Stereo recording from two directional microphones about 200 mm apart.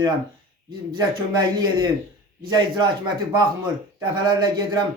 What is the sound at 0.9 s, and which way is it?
A man's voice, 20° right (ahead or behind).